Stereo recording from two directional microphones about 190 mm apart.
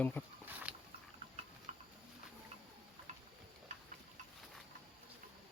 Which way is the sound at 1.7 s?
35° right (ahead or behind).